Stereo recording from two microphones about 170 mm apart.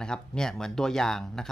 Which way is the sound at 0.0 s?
5° left (ahead or behind).